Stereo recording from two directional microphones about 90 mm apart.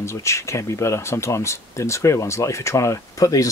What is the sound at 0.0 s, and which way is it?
Speech, 30° left (ahead or behind).